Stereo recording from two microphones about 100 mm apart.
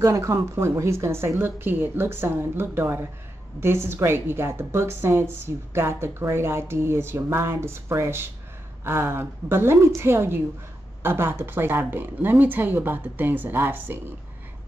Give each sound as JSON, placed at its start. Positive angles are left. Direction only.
{"t": 0.0, "sound": "speech", "side_deg": -30}